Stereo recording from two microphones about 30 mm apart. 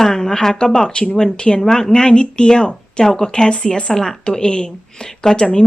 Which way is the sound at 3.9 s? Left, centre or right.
Centre.